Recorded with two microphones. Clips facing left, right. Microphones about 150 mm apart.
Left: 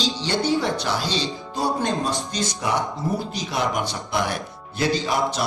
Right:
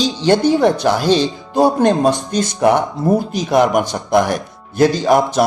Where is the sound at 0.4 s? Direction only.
50° right (ahead or behind).